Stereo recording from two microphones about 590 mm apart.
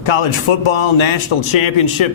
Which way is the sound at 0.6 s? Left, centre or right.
Left.